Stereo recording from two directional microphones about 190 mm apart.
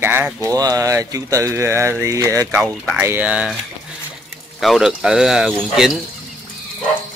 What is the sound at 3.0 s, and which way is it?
Speech, 10° right (ahead or behind).